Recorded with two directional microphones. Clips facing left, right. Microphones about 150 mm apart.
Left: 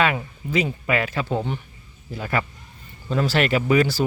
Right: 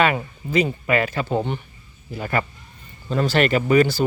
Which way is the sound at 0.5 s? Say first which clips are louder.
Right 3 dB; centre (ahead or behind).